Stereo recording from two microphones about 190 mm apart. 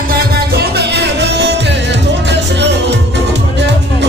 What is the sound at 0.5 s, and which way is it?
Music, 60° right (ahead or behind).